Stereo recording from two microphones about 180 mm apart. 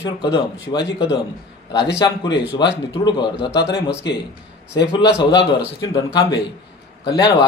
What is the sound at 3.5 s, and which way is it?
Speech, 70° left (ahead or behind).